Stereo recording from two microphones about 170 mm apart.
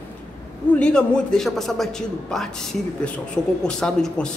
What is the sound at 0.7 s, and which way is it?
A man's voice, 5° left (ahead or behind).